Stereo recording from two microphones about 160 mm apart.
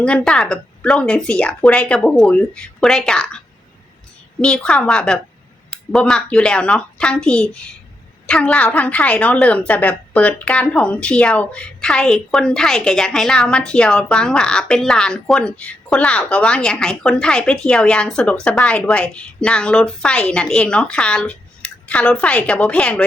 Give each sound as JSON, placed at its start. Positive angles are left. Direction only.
{"t": 0.0, "sound": "a woman's voice", "side_deg": 5}